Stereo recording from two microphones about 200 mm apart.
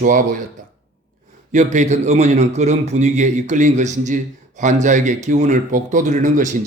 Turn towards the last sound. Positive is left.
turn(degrees=-40)  # may be behind; listen again after turning